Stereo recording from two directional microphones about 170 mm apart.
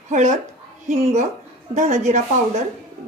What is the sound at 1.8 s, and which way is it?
Speech, 45° right (ahead or behind).